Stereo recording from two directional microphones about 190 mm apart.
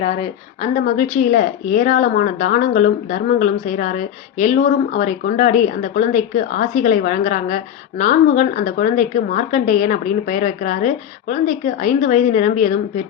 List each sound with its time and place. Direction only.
0.0 s speech: 35° left (ahead or behind)